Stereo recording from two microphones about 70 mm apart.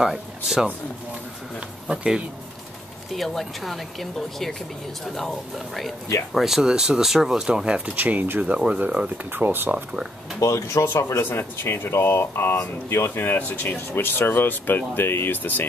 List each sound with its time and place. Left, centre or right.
0.0 s speech: centre
1.9 s speech: centre
3.1 s speech: centre
6.3 s speech: centre
7.9 s speech: right
9.3 s speech: right
10.4 s speech: left